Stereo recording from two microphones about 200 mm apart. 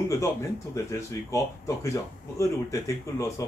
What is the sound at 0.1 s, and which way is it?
Speech, 15° left (ahead or behind).